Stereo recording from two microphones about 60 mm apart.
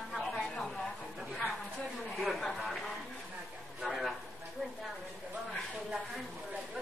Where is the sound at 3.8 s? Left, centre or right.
Centre.